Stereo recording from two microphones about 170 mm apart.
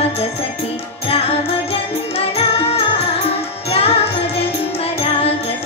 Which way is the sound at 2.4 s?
35° left (ahead or behind).